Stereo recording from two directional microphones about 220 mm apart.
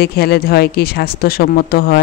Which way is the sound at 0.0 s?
45° left (ahead or behind).